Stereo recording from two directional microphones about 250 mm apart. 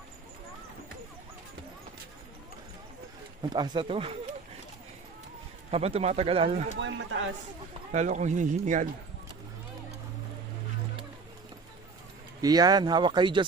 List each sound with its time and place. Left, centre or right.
3.5 s speech: centre
5.7 s speech: right
6.7 s speech: right
7.9 s speech: right
12.4 s speech: centre